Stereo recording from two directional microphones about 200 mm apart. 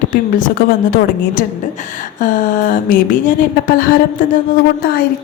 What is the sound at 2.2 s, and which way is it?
A woman's voice, 40° left (ahead or behind).